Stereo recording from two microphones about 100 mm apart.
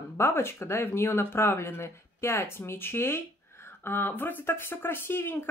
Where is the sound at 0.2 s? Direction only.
25° left (ahead or behind).